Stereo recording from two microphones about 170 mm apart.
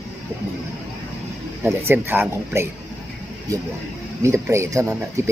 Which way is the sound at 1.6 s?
10° right (ahead or behind).